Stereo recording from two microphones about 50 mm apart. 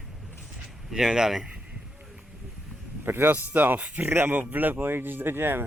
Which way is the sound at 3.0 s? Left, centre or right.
Right.